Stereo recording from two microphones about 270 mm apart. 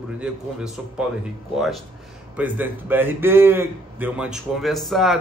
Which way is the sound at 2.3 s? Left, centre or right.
Centre.